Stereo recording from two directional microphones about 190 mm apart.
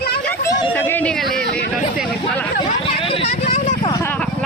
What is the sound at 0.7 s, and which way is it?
Speech, 10° left (ahead or behind).